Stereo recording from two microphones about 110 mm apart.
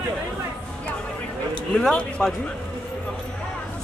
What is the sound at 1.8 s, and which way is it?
Speech, 5° left (ahead or behind).